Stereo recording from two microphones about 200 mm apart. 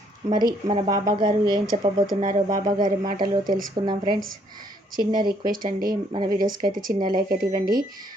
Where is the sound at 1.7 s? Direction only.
30° right (ahead or behind).